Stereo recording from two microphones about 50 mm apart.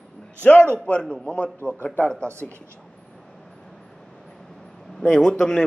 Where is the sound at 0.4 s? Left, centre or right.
Left.